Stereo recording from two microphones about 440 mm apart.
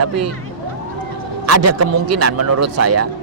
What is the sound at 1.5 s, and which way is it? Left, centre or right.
Speech, right.